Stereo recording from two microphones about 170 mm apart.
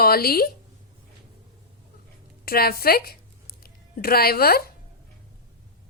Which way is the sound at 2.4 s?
65° left (ahead or behind).